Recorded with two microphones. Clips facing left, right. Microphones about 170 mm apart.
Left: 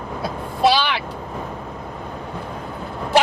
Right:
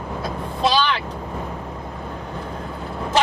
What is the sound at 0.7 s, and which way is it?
Speech, 10° left (ahead or behind).